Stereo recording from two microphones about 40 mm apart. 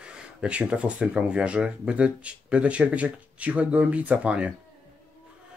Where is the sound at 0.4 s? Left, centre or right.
Right.